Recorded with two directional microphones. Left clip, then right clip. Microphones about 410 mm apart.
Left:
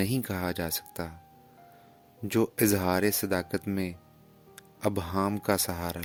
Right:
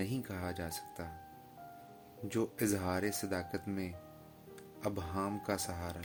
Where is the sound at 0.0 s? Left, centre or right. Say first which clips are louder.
Left 9 dB; left.